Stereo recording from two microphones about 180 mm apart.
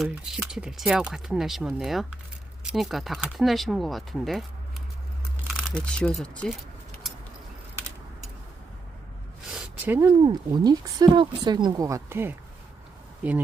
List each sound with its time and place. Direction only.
0.0 s speech: 5° right (ahead or behind)
5.7 s speech: 5° left (ahead or behind)
9.5 s a sound: 5° right (ahead or behind)
10.2 s speech: 25° right (ahead or behind); by 13.4 s 10° right (ahead or behind)